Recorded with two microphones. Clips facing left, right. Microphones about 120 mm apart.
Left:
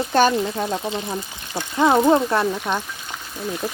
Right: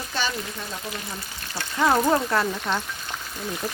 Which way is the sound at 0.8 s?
25° left (ahead or behind).